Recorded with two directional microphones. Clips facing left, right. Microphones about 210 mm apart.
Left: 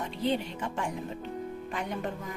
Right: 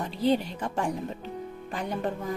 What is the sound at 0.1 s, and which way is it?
Speech, 35° right (ahead or behind).